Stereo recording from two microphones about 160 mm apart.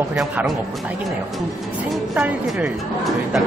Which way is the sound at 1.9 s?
5° right (ahead or behind).